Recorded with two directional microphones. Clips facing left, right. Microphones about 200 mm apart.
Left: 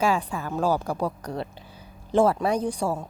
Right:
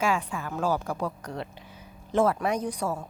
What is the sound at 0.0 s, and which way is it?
A woman's voice, 35° left (ahead or behind).